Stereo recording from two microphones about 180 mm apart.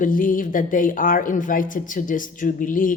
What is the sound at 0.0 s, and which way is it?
Speech, 50° left (ahead or behind).